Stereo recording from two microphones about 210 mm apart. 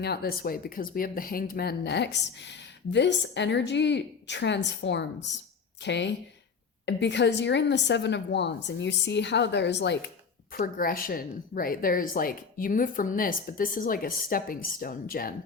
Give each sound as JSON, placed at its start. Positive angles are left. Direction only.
{"t": 0.0, "sound": "speech", "side_deg": 50}
{"t": 10.6, "sound": "a woman's voice", "side_deg": 45}